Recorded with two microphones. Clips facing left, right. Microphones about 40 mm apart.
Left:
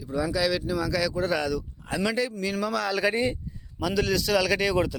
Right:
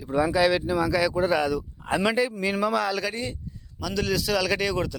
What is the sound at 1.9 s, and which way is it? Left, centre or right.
Speech, right.